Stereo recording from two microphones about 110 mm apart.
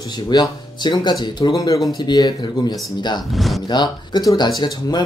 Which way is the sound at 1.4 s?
30° left (ahead or behind).